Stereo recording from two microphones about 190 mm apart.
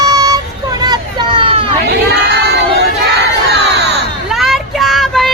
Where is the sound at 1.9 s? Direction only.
60° right (ahead or behind).